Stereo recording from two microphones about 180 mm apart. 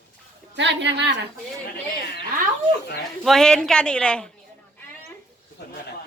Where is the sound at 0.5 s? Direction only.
75° right (ahead or behind).